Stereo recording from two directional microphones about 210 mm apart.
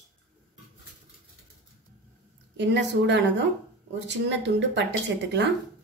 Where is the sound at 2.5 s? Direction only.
55° right (ahead or behind).